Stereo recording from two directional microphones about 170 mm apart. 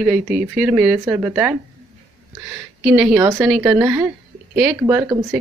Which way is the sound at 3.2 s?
15° right (ahead or behind).